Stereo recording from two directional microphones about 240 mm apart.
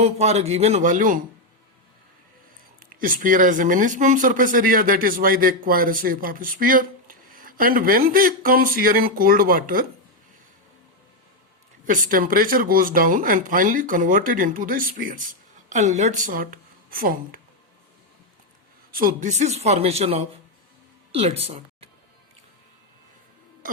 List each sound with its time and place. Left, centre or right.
0.0 s speech: right
3.0 s speech: right
11.9 s speech: right
18.9 s speech: right